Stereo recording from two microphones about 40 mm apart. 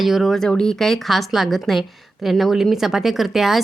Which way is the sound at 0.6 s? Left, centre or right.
Centre.